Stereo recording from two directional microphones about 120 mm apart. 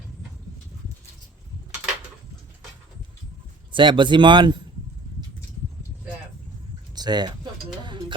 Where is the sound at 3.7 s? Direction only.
45° right (ahead or behind).